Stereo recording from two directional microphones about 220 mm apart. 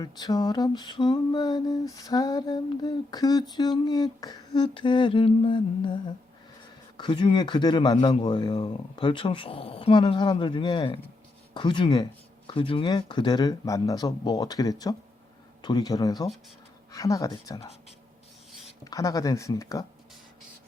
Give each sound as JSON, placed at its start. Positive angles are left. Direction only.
{"t": 0.0, "sound": "a sound", "side_deg": 20}
{"t": 15.6, "sound": "speech", "side_deg": 20}
{"t": 18.9, "sound": "speech", "side_deg": 15}